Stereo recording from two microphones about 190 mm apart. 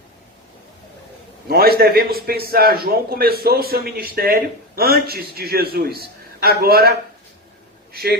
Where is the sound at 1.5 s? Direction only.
55° right (ahead or behind).